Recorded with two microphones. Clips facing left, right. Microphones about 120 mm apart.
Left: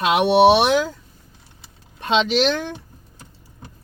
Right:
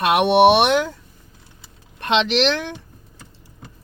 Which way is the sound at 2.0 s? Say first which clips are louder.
Even; 70° right (ahead or behind).